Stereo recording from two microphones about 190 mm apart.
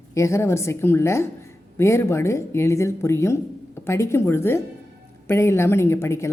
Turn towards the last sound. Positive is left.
turn(degrees=15)  # may be behind; listen again after turning